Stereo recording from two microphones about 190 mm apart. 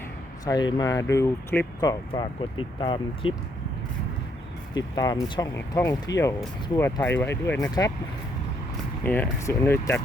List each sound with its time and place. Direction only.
0.4 s speech: 20° left (ahead or behind)
4.7 s speech: 20° left (ahead or behind)
9.0 s speech: 10° left (ahead or behind)